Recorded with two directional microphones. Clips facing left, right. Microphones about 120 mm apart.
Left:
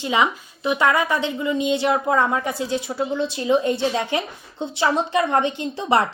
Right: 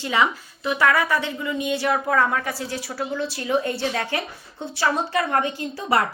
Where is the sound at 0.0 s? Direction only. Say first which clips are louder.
Left 1 dB; 20° left (ahead or behind).